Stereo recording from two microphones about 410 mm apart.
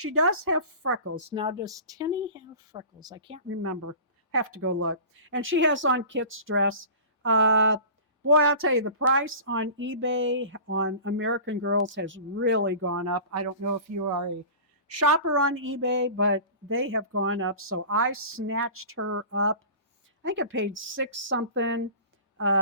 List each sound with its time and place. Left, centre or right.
0.0 s a woman's voice: right
1.1 s speech: centre
3.5 s a woman's voice: right